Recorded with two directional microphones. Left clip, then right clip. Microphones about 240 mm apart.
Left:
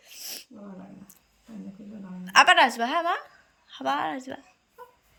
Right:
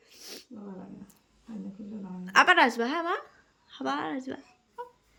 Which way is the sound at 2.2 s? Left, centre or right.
Centre.